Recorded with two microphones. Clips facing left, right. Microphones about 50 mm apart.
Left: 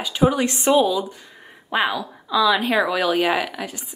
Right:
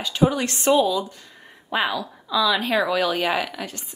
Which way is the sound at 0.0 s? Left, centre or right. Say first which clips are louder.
Left 2 dB; centre.